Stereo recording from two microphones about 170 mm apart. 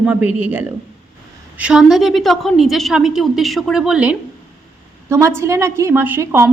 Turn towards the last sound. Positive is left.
turn(degrees=-15)  # may be behind; listen again after turning